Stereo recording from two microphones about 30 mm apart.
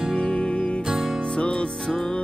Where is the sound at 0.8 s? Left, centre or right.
Right.